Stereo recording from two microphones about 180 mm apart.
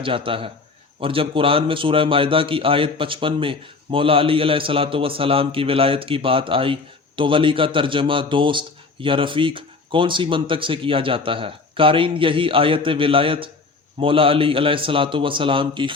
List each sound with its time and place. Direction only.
0.0 s a man's voice: 30° right (ahead or behind)